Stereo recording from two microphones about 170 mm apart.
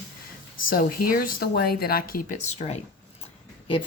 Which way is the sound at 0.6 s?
55° left (ahead or behind).